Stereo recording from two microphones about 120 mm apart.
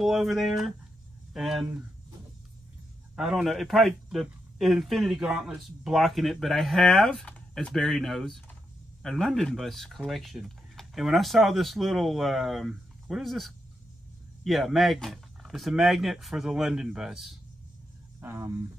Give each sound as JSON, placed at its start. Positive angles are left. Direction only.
{"t": 0.0, "sound": "a man's voice", "side_deg": 0}
{"t": 3.2, "sound": "a man's voice", "side_deg": -5}
{"t": 18.2, "sound": "speech", "side_deg": -20}